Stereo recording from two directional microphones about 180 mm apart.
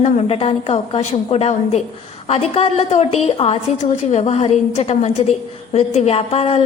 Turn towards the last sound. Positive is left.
turn(degrees=35)  # may be behind; listen again after turning